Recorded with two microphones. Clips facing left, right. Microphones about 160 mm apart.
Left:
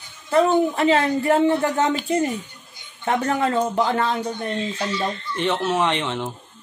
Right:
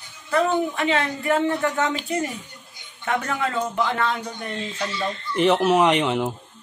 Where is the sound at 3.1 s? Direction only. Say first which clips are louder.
Left 4 dB; 35° left (ahead or behind).